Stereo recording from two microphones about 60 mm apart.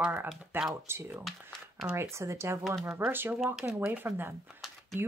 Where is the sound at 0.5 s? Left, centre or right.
Right.